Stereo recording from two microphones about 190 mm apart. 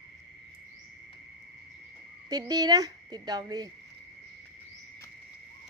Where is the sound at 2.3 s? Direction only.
20° right (ahead or behind).